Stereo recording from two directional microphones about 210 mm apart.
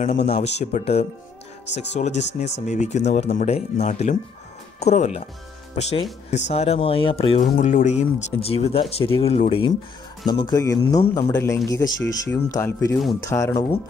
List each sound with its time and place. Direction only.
0.0 s speech: 30° left (ahead or behind)
7.5 s speech: 40° left (ahead or behind); by 13.7 s 15° left (ahead or behind)